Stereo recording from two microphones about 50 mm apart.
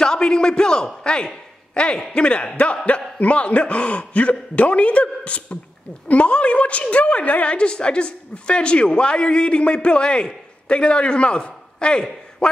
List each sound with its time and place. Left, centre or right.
0.0 s a man's voice: centre